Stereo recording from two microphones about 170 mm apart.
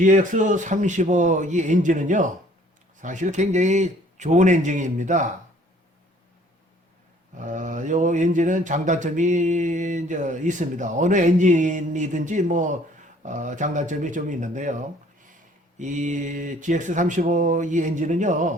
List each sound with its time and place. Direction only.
0.0 s speech: 50° right (ahead or behind)
7.3 s speech: 50° right (ahead or behind)